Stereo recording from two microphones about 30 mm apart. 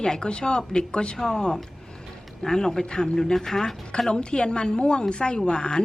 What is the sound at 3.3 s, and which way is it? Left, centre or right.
Speech, centre.